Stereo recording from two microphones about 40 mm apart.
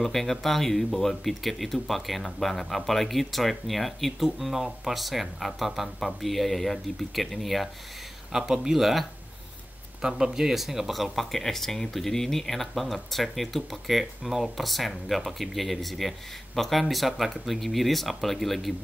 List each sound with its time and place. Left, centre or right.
0.0 s speech: centre
8.3 s speech: centre
10.0 s speech: centre